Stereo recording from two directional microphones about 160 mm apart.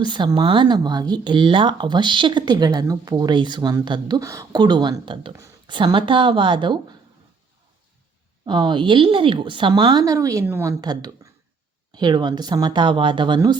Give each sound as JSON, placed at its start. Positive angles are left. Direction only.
{"t": 0.0, "sound": "speech", "side_deg": -30}
{"t": 8.4, "sound": "speech", "side_deg": -30}